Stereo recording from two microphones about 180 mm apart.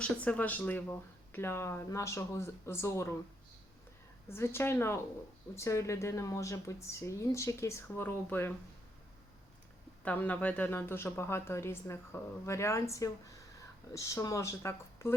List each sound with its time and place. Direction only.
0.0 s speech: 10° left (ahead or behind)
4.3 s speech: 15° left (ahead or behind)
10.0 s speech: 10° left (ahead or behind)